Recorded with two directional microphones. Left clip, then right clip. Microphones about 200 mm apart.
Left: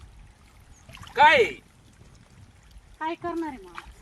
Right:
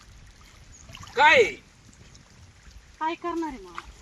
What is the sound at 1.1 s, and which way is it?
Speech, 25° left (ahead or behind).